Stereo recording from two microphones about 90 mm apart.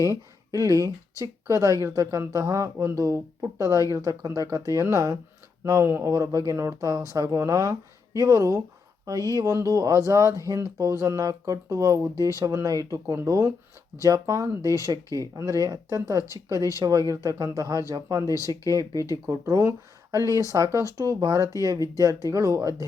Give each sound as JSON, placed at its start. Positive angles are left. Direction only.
{"t": 0.0, "sound": "speech", "side_deg": -35}